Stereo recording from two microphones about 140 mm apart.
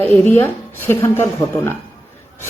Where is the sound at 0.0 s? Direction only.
10° left (ahead or behind).